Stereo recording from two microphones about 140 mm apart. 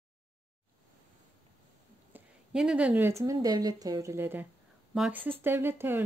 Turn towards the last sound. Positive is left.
turn(degrees=-15)  # may be behind; listen again after turning